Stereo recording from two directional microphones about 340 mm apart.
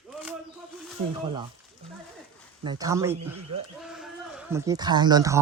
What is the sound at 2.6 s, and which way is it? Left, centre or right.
Speech, centre.